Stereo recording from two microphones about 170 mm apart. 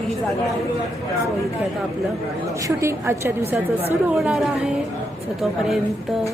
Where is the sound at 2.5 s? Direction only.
15° right (ahead or behind).